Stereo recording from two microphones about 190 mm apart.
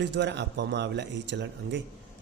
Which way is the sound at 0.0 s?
65° right (ahead or behind).